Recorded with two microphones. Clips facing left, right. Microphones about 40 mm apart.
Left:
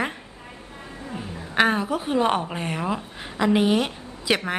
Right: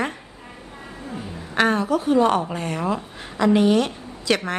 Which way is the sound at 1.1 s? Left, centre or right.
Centre.